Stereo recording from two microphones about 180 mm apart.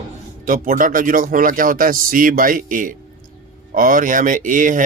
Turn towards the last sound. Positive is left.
turn(degrees=-45)  # may be behind; listen again after turning